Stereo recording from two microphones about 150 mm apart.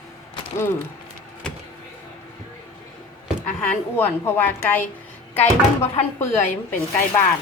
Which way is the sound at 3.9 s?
15° left (ahead or behind).